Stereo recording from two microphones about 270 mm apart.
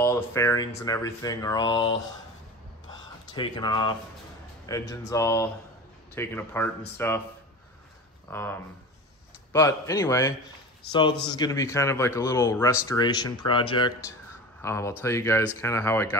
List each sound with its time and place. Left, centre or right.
0.0 s speech: centre
2.9 s a sound: centre
4.6 s speech: centre
8.3 s speech: centre